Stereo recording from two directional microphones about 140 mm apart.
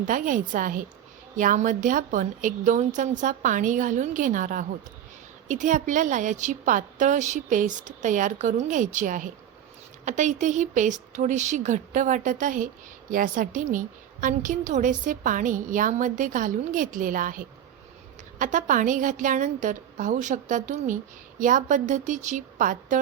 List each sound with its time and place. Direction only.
0.0 s a woman's voice: 70° right (ahead or behind)
18.3 s a woman's voice: 65° right (ahead or behind)